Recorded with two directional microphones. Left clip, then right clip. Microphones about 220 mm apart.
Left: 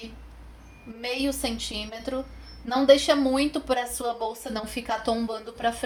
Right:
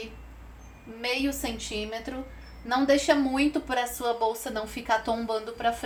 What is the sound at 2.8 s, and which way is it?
Speech, 35° left (ahead or behind).